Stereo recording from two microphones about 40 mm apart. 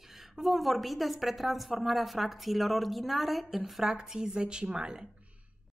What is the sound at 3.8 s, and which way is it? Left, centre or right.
A woman's voice, centre.